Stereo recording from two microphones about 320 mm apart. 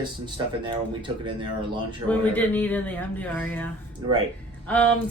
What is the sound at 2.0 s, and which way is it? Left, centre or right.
Speech, centre.